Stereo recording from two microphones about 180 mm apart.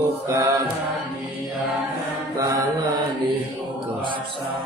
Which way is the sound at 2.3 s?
15° right (ahead or behind).